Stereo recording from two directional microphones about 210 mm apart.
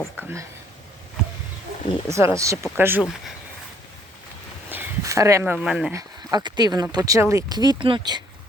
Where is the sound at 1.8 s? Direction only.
25° left (ahead or behind).